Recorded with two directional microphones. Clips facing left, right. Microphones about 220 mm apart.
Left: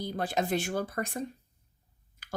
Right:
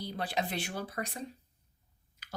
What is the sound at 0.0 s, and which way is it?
Speech, 45° left (ahead or behind).